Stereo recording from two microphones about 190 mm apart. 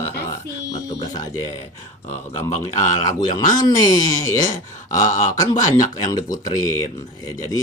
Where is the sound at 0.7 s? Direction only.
20° left (ahead or behind).